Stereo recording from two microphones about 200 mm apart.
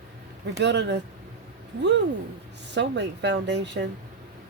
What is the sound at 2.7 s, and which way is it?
Speech, 60° right (ahead or behind).